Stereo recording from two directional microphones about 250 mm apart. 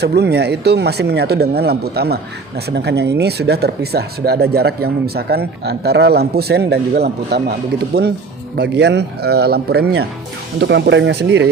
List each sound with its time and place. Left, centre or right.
0.0 s speech: right